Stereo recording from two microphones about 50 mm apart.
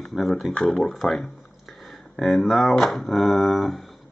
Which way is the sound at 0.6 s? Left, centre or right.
Left.